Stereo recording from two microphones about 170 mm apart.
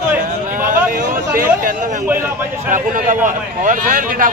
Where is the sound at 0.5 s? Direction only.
50° right (ahead or behind).